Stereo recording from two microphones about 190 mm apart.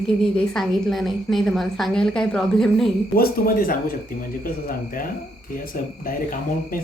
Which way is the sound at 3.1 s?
50° left (ahead or behind).